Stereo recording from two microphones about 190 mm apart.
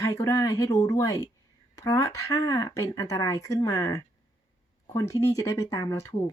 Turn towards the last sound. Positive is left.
turn(degrees=15)  # may be behind; listen again after turning